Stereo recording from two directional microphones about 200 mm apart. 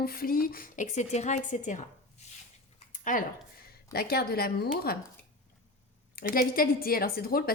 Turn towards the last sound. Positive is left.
turn(degrees=50)  # may be behind; listen again after turning